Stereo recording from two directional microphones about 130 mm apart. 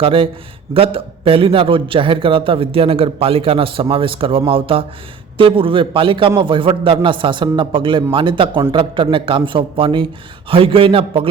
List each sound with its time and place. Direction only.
0.0 s a man's voice: 40° right (ahead or behind)